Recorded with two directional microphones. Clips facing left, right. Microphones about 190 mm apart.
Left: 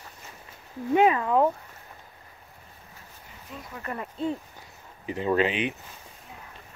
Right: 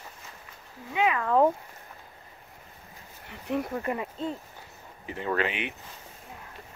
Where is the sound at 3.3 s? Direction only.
65° right (ahead or behind).